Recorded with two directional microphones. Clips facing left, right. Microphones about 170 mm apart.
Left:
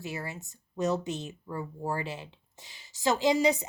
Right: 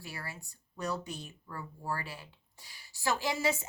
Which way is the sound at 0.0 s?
20° left (ahead or behind).